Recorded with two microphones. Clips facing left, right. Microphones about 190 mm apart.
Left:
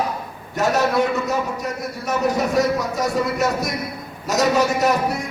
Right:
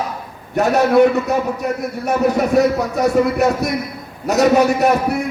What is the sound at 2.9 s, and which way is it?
A man's voice, 60° right (ahead or behind).